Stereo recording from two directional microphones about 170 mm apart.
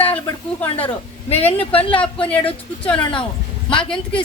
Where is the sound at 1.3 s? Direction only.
35° left (ahead or behind).